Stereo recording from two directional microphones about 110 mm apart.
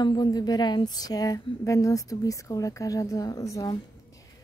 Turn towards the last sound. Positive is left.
turn(degrees=30)  # may be behind; listen again after turning